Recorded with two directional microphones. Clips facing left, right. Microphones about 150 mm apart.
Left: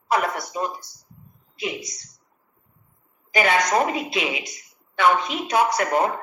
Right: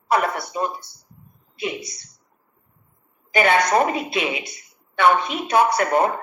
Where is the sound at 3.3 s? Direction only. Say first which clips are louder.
Right 2 dB; 55° right (ahead or behind).